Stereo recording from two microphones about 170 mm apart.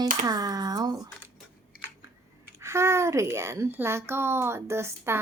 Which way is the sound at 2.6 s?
15° right (ahead or behind).